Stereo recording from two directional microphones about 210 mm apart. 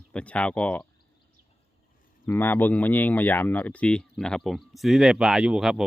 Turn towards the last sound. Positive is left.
turn(degrees=-5)  # may be behind; listen again after turning